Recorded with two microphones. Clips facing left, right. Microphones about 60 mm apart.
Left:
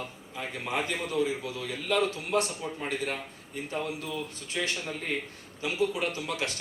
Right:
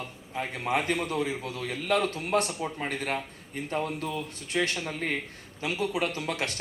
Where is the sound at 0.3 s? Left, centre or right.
Right.